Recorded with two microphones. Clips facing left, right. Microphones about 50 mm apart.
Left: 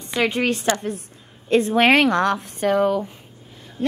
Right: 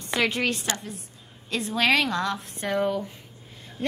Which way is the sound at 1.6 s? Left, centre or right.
Left.